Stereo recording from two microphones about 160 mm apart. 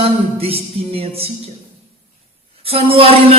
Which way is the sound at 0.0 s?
35° right (ahead or behind).